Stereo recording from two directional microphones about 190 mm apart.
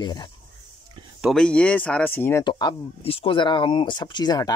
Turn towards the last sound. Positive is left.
turn(degrees=20)  # may be behind; listen again after turning